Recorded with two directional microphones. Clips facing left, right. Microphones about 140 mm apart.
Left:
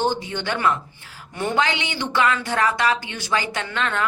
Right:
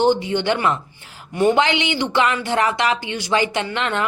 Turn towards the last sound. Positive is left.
turn(degrees=-20)  # may be behind; listen again after turning